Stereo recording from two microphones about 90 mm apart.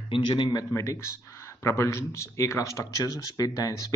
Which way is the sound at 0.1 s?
65° left (ahead or behind).